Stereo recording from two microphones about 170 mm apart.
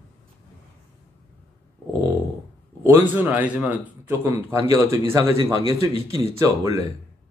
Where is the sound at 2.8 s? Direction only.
10° right (ahead or behind).